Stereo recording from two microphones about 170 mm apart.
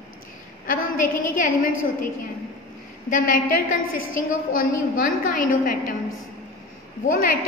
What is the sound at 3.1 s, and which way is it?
A woman's voice, 55° left (ahead or behind).